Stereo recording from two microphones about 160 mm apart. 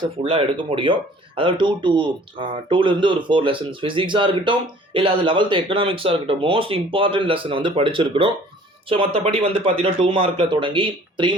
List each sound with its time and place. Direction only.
0.0 s speech: 35° right (ahead or behind)